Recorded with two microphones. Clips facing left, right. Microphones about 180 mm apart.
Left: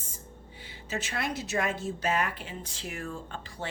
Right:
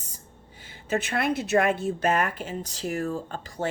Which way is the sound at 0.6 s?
50° right (ahead or behind).